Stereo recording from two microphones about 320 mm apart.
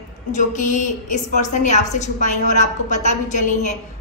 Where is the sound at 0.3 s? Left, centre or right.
Left.